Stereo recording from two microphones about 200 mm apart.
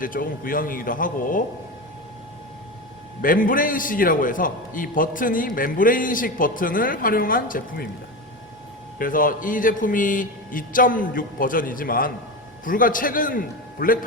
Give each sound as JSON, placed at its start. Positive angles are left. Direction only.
{"t": 0.0, "sound": "a man's voice", "side_deg": 45}
{"t": 3.2, "sound": "a man's voice", "side_deg": 45}
{"t": 9.0, "sound": "a man's voice", "side_deg": 45}